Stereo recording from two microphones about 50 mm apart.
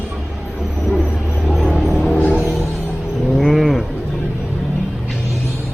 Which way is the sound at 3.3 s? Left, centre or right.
Centre.